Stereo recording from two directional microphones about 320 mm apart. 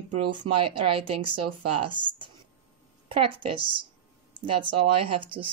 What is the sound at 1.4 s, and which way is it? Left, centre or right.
Speech, right.